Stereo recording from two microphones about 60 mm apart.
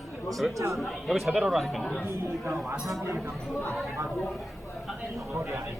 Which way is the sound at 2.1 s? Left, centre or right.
Right.